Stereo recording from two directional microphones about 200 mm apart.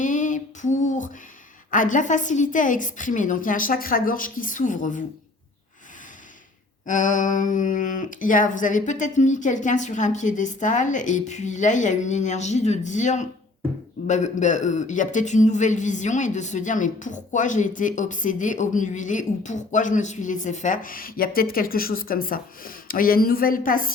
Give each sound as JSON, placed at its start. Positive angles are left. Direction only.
{"t": 0.0, "sound": "female singing", "side_deg": 40}
{"t": 1.7, "sound": "a man's voice", "side_deg": 40}
{"t": 6.8, "sound": "a man's voice", "side_deg": 40}